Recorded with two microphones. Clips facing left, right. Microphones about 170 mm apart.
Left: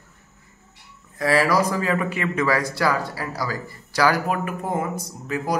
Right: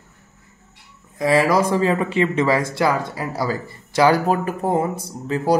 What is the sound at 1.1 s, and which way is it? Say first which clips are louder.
Speech: right 3 dB; 20° right (ahead or behind).